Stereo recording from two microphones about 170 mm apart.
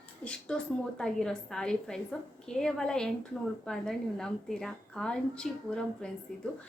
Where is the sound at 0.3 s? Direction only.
5° left (ahead or behind).